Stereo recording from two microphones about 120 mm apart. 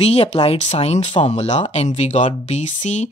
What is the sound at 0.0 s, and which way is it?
Speech, 55° left (ahead or behind).